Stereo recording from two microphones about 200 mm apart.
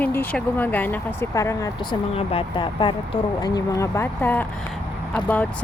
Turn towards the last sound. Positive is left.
turn(degrees=5)  # may be behind; listen again after turning